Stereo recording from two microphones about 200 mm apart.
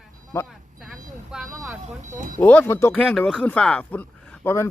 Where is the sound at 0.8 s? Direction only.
Centre (ahead or behind).